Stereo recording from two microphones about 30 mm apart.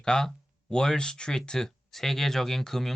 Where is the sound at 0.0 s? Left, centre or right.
Left.